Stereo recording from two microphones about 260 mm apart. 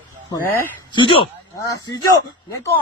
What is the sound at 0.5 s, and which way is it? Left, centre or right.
Speech, centre.